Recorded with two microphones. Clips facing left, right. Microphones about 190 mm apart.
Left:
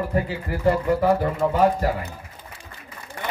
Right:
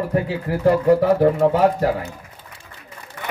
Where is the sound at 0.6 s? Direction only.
70° right (ahead or behind).